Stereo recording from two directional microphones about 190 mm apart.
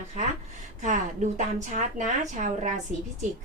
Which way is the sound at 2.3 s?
40° right (ahead or behind).